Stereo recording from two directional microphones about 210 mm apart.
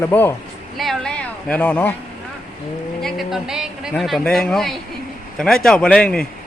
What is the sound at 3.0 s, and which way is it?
Speech, centre (ahead or behind).